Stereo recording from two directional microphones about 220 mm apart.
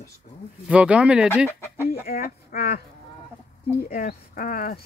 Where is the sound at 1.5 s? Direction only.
10° left (ahead or behind).